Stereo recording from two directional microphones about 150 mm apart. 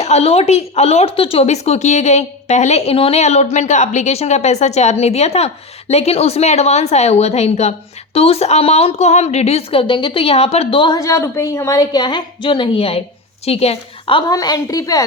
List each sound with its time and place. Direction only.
0.0 s a woman's voice: 45° left (ahead or behind)
11.0 s a woman's voice: 20° left (ahead or behind)